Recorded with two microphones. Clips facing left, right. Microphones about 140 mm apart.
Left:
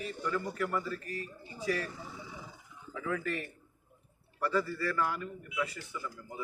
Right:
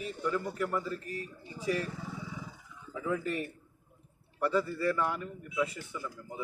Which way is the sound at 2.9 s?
20° right (ahead or behind).